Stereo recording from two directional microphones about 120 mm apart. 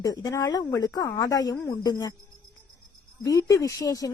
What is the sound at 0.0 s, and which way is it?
A woman's voice, 30° left (ahead or behind).